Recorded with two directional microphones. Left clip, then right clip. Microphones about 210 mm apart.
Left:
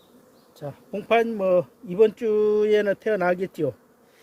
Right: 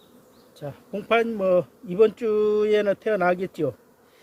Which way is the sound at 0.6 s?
15° left (ahead or behind).